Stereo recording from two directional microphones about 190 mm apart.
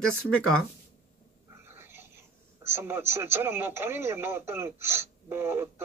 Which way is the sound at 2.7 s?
10° right (ahead or behind).